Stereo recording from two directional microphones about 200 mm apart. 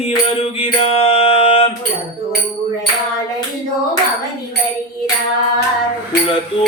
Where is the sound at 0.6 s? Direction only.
30° left (ahead or behind).